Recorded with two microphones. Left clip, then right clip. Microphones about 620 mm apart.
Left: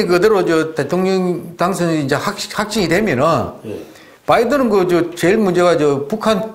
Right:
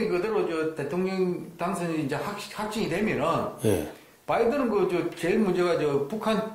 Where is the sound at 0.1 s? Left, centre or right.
Left.